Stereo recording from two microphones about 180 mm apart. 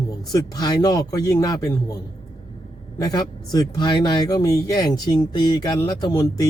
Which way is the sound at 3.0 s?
20° left (ahead or behind).